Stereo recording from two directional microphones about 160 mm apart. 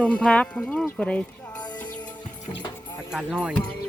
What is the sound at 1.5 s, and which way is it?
Music, 25° left (ahead or behind).